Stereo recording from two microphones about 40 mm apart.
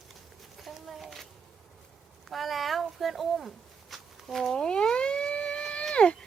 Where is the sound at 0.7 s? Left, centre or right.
Centre.